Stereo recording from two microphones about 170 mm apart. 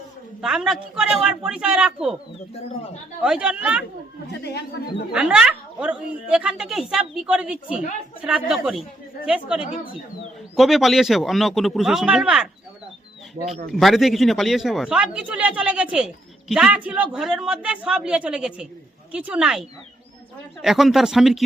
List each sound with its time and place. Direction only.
0.4 s speech: 5° right (ahead or behind)
3.2 s speech: 5° right (ahead or behind)
4.3 s a woman's voice: 80° left
5.1 s speech: 5° right (ahead or behind)
13.7 s speech: centre (ahead or behind)